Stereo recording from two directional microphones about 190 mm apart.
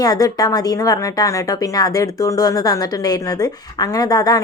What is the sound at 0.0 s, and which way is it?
Speech, 20° left (ahead or behind).